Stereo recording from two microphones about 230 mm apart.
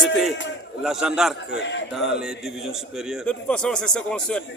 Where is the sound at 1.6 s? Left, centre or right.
Left.